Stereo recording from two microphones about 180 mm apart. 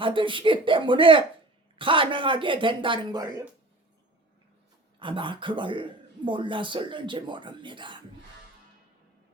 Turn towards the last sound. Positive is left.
turn(degrees=-25)  # may be behind; listen again after turning